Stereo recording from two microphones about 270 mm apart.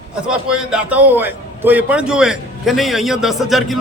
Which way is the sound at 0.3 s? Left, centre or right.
Centre.